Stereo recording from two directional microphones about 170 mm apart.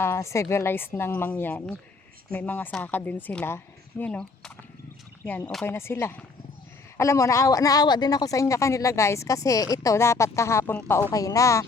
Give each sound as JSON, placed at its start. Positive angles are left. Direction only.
{"t": 0.0, "sound": "speech", "side_deg": 15}